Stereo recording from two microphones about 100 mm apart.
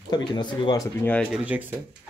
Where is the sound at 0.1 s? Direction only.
45° left (ahead or behind).